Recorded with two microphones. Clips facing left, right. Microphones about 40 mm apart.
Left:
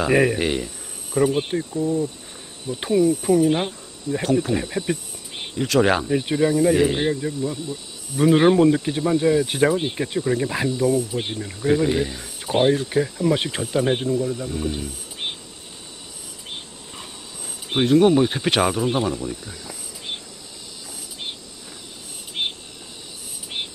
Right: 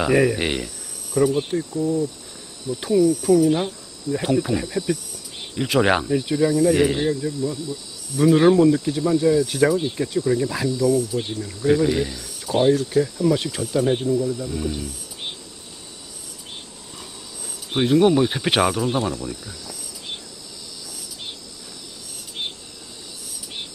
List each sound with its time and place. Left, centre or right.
0.1 s speech: centre
0.4 s speech: centre
1.1 s speech: left
5.6 s speech: centre
6.0 s speech: left
11.6 s speech: centre
12.1 s speech: left
14.8 s a sound: left
16.9 s a sound: left
17.7 s speech: centre
18.8 s speech: centre
22.4 s cricket: left